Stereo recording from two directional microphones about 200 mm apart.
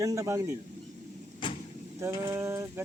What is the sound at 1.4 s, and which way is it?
Vehicle, 25° left (ahead or behind).